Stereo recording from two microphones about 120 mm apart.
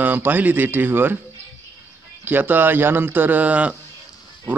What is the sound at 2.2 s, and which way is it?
A man's voice, 15° right (ahead or behind).